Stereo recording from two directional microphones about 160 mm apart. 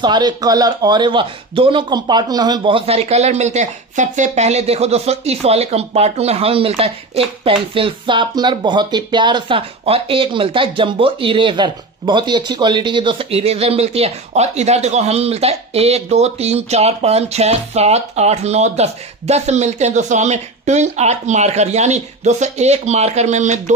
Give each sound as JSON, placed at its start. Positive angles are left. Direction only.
{"t": 0.0, "sound": "speech", "side_deg": -25}